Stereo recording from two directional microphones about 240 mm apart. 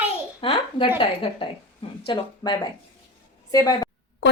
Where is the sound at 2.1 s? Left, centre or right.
Centre.